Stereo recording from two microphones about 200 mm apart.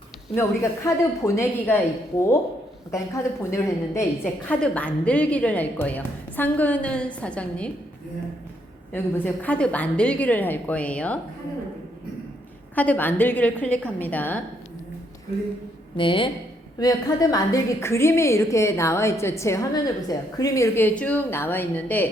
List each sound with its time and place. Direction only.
0.3 s a woman's voice: 15° left (ahead or behind)
8.9 s a woman's voice: 10° left (ahead or behind)
12.7 s a woman's voice: 10° left (ahead or behind)
16.0 s a woman's voice: 25° left (ahead or behind); by 22.1 s 10° left (ahead or behind)